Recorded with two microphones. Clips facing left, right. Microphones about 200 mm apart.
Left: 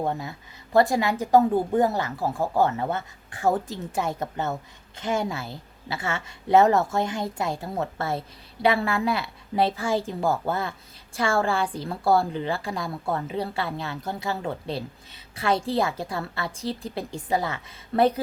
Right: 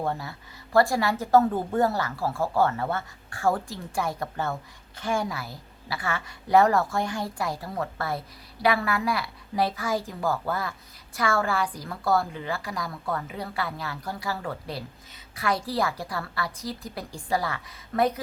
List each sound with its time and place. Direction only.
0.0 s a woman's voice: 20° left (ahead or behind)